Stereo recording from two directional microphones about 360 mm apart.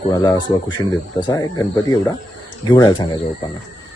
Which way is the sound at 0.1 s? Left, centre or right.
Centre.